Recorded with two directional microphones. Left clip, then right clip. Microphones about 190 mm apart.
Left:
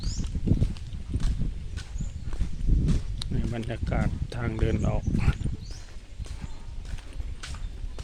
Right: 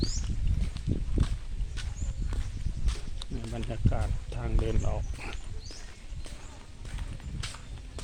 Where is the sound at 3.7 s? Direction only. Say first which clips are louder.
Left 2 dB; 45° left (ahead or behind).